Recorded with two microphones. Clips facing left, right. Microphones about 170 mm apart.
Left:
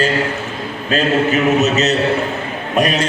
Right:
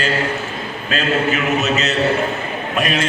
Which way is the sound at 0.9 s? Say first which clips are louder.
Left 4 dB; 40° left (ahead or behind).